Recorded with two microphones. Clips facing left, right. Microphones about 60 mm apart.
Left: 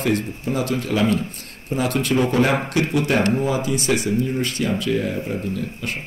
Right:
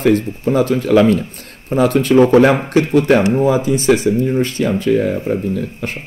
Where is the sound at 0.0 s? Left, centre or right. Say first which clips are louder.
Right 8 dB; right.